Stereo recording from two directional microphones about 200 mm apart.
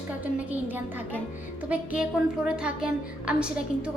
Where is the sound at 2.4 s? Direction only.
5° right (ahead or behind).